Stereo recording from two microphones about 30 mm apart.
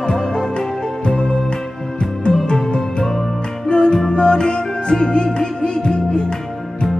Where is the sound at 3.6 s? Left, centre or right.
Left.